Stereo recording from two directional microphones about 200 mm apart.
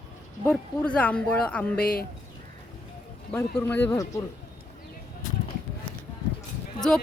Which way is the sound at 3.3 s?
10° left (ahead or behind).